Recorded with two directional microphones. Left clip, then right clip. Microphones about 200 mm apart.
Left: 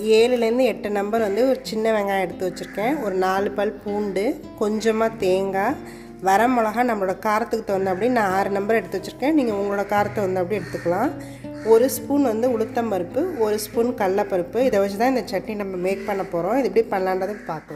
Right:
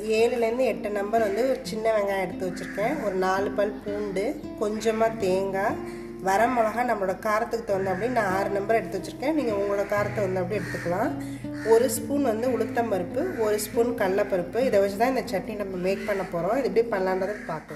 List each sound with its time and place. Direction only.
0.1 s a woman's voice: 45° left (ahead or behind)